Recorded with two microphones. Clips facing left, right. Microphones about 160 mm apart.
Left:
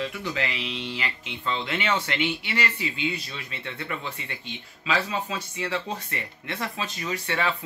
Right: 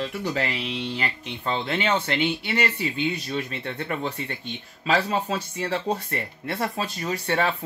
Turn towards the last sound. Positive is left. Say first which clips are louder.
# right 3 dB
turn(degrees=-40)  # may be behind; listen again after turning